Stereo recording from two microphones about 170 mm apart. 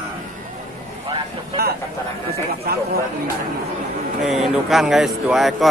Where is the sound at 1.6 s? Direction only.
65° right (ahead or behind).